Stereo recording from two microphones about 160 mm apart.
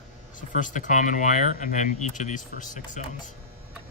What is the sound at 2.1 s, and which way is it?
Speech, 50° left (ahead or behind).